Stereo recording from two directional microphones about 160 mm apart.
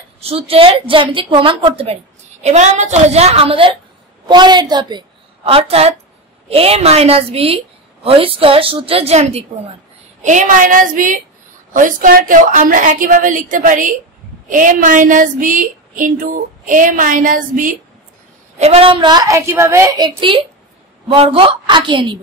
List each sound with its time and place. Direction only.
0.2 s a woman's voice: 40° right (ahead or behind)
2.4 s a woman's voice: 45° right (ahead or behind)
18.6 s a woman's voice: 40° right (ahead or behind)